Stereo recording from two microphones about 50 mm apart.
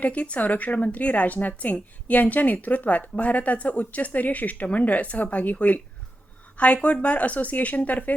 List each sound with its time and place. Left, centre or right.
0.0 s a woman's voice: left
6.8 s speech: left